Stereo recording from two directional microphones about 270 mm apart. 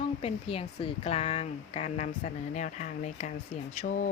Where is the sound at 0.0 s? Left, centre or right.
Left.